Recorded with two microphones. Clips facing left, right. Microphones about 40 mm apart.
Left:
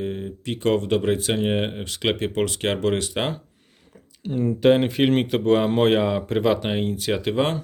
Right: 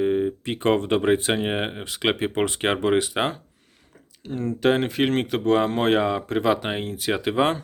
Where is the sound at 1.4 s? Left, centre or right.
Centre.